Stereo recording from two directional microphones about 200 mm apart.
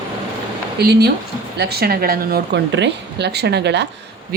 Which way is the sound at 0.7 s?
55° right (ahead or behind).